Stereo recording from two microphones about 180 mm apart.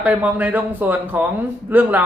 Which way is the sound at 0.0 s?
10° right (ahead or behind).